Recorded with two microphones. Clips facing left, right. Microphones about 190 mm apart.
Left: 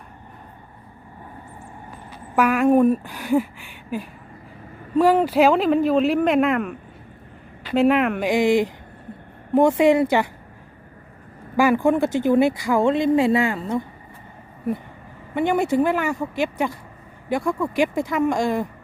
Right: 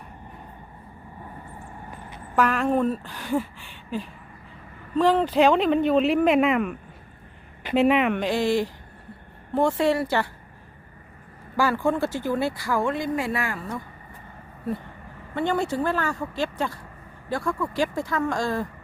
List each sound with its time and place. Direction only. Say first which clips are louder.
2.3 s speech: left 5 dB; 10° left (ahead or behind)
7.8 s speech: left 2 dB; centre (ahead or behind)
8.2 s speech: left 5 dB; 15° left (ahead or behind)
11.5 s speech: left 5 dB; 15° left (ahead or behind)
15.4 s speech: left 5 dB; 15° left (ahead or behind)